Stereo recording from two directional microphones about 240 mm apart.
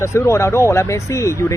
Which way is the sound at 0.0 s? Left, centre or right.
Centre.